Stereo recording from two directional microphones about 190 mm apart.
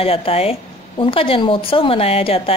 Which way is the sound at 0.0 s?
30° left (ahead or behind).